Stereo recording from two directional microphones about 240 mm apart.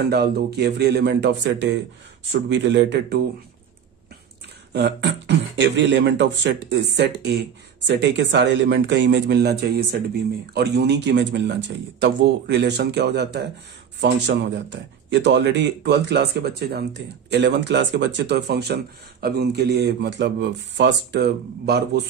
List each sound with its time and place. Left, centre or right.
0.1 s speech: right
4.7 s speech: right